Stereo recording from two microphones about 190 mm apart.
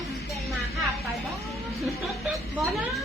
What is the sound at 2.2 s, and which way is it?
Speech, centre (ahead or behind).